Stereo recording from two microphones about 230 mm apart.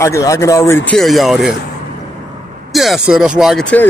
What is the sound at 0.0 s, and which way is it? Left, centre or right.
Speech, centre.